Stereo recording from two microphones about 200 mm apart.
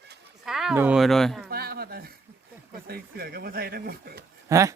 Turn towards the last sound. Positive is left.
turn(degrees=-15)  # may be behind; listen again after turning